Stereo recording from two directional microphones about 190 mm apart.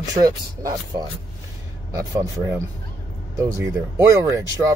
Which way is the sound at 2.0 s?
15° right (ahead or behind).